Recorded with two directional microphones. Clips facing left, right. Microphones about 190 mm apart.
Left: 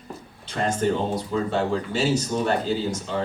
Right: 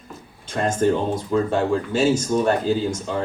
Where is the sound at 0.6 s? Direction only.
45° right (ahead or behind).